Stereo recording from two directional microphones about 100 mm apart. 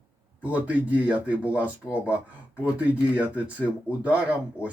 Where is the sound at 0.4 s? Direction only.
15° right (ahead or behind).